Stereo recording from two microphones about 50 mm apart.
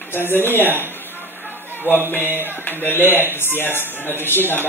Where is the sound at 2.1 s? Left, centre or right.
Left.